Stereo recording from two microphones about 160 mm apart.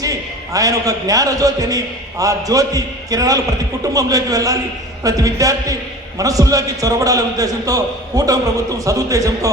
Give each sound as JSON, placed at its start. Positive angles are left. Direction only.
{"t": 0.0, "sound": "a man's voice", "side_deg": -20}